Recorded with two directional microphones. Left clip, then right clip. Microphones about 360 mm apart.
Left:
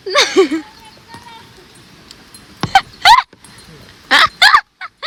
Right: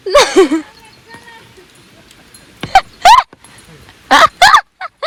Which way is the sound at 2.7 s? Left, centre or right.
Centre.